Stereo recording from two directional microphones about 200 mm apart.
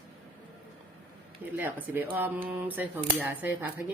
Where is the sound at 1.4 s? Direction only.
10° right (ahead or behind).